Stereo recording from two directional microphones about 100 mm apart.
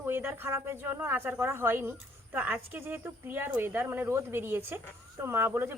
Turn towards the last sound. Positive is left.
turn(degrees=-25)  # may be behind; listen again after turning